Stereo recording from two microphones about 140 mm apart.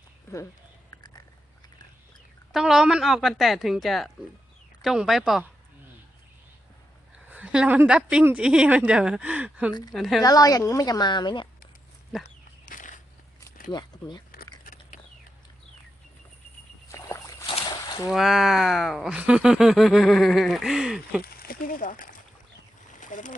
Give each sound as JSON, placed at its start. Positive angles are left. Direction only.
{"t": 2.5, "sound": "speech", "side_deg": 0}
{"t": 7.3, "sound": "a woman's voice", "side_deg": -10}
{"t": 9.9, "sound": "speech", "side_deg": 0}
{"t": 10.2, "sound": "a woman's voice", "side_deg": 25}
{"t": 12.6, "sound": "a sound", "side_deg": 70}
{"t": 14.6, "sound": "a sound", "side_deg": 80}
{"t": 16.9, "sound": "a sound", "side_deg": 20}
{"t": 17.4, "sound": "boat", "side_deg": 35}
{"t": 18.1, "sound": "speech", "side_deg": 0}
{"t": 21.2, "sound": "speech", "side_deg": 90}
{"t": 22.9, "sound": "splash", "side_deg": 65}